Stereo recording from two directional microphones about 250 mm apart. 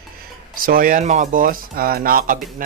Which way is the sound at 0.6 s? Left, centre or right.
Right.